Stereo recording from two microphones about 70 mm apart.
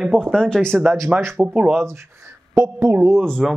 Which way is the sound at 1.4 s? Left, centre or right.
Right.